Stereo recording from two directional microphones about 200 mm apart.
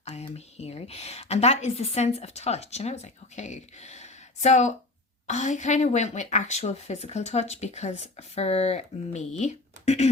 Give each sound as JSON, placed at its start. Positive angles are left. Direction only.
{"t": 0.0, "sound": "a woman's voice", "side_deg": 30}